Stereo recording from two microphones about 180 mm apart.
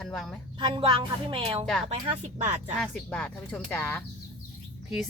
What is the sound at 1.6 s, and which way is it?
Speech, 5° left (ahead or behind).